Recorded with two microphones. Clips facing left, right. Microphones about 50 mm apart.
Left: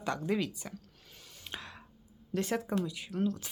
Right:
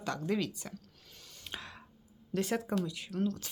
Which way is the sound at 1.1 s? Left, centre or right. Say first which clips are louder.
Left 1 dB; centre.